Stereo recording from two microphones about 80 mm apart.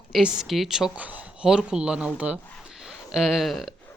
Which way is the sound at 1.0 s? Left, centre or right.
Centre.